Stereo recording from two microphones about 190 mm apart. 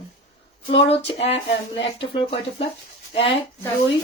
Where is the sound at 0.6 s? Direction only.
30° left (ahead or behind).